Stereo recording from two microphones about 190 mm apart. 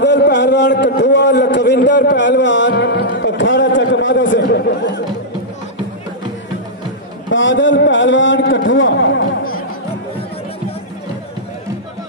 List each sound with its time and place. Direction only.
0.0 s speech: 70° left (ahead or behind)
7.2 s speech: 75° left (ahead or behind)